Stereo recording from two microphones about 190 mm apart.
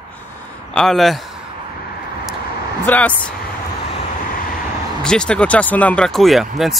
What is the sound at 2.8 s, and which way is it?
Speech, 10° left (ahead or behind).